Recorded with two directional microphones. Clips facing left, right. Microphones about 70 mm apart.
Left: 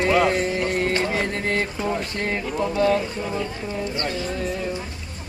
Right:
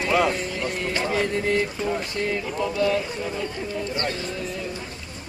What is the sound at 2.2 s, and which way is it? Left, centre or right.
Speech, left.